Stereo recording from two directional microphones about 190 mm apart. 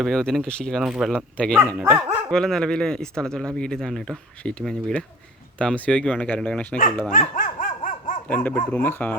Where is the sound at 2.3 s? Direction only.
5° left (ahead or behind).